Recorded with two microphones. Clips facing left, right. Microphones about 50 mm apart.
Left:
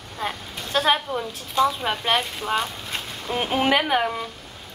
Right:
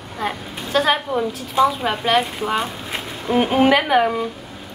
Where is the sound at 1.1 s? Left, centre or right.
Centre.